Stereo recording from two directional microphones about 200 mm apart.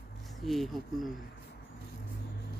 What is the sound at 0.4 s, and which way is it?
Speech, centre (ahead or behind).